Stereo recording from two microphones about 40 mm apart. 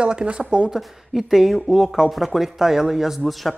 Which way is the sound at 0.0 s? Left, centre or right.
Right.